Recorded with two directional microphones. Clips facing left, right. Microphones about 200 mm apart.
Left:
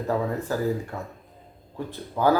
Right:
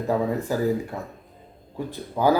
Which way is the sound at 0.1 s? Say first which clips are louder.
Right 2 dB; 10° right (ahead or behind).